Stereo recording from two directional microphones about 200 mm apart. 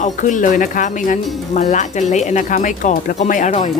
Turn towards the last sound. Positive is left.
turn(degrees=35)  # may be behind; listen again after turning